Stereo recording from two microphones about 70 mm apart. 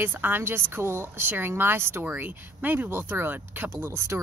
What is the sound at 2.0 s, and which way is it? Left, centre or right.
Speech, right.